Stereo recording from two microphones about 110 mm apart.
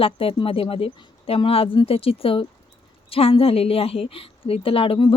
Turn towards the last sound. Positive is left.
turn(degrees=55)  # may be behind; listen again after turning